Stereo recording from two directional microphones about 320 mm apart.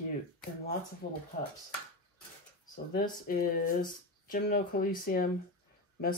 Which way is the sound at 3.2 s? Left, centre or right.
Left.